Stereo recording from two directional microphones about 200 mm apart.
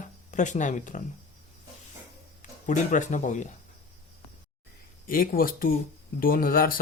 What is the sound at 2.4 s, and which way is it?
Speech, 40° left (ahead or behind).